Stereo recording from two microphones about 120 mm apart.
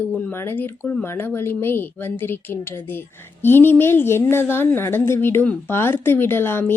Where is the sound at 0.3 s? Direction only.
15° left (ahead or behind).